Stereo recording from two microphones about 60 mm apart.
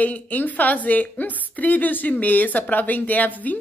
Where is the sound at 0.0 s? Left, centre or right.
Left.